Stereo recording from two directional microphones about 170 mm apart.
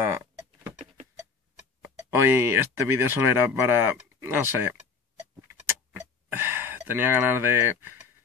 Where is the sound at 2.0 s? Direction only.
15° right (ahead or behind).